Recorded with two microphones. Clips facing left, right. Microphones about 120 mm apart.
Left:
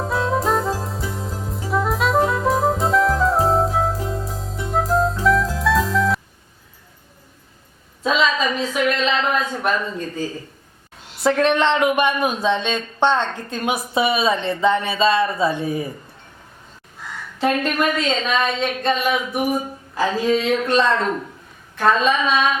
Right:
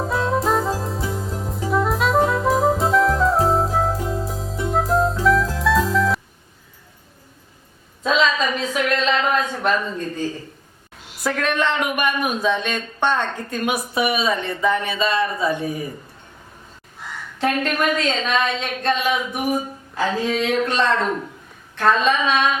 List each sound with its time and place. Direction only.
0.0 s music: centre (ahead or behind)
8.0 s a sound: centre (ahead or behind)
11.2 s speech: 25° left (ahead or behind)
17.3 s a woman's voice: 5° left (ahead or behind)